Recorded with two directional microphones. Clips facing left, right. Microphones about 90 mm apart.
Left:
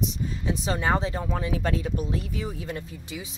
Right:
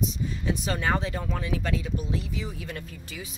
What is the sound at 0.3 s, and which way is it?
Speech, 25° left (ahead or behind).